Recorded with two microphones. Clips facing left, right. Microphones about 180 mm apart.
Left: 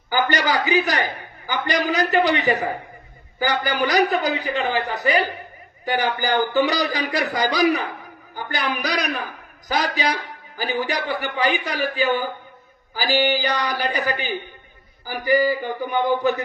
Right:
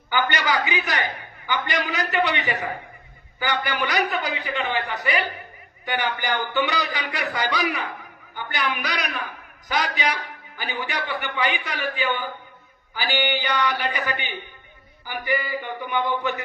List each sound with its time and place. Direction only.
0.1 s speech: 35° left (ahead or behind)